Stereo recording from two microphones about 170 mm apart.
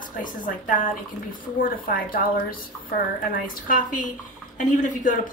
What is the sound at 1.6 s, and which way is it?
Speech, 55° left (ahead or behind).